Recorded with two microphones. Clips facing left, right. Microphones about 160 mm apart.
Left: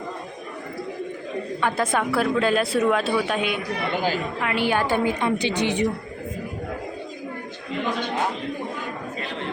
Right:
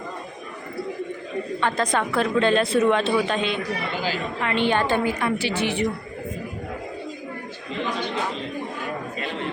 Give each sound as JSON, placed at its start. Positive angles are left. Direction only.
{"t": 1.6, "sound": "a woman's voice", "side_deg": 5}
{"t": 3.9, "sound": "a woman's voice", "side_deg": 50}
{"t": 4.4, "sound": "a woman's voice", "side_deg": 5}
{"t": 5.0, "sound": "a woman's voice", "side_deg": 20}